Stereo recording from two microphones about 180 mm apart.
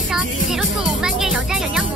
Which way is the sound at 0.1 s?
5° right (ahead or behind).